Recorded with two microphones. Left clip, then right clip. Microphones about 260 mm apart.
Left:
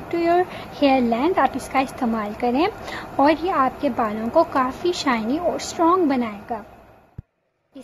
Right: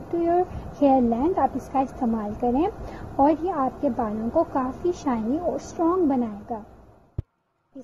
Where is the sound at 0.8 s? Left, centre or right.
Centre.